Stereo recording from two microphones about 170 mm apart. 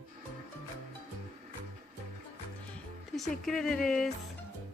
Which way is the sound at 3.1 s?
Centre (ahead or behind).